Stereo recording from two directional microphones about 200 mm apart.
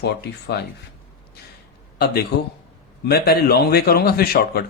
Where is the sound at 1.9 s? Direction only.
50° left (ahead or behind).